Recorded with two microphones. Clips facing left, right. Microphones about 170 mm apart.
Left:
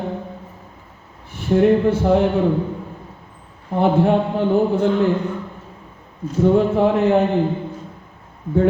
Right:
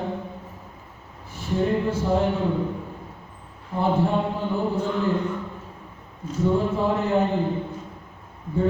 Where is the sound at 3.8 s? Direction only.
70° left (ahead or behind).